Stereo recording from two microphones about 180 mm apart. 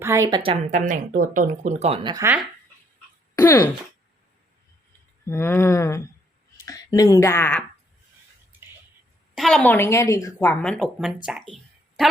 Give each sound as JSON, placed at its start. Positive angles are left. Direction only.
{"t": 0.0, "sound": "speech", "side_deg": -15}
{"t": 2.1, "sound": "speech", "side_deg": -15}
{"t": 3.3, "sound": "speech", "side_deg": 15}
{"t": 5.3, "sound": "speech", "side_deg": 15}
{"t": 9.3, "sound": "a woman's voice", "side_deg": 0}
{"t": 9.7, "sound": "speech", "side_deg": 15}
{"t": 11.3, "sound": "a sound", "side_deg": 0}